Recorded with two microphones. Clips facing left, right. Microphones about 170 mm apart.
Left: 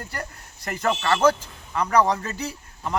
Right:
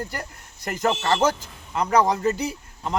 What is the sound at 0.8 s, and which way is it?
Speech, 20° right (ahead or behind).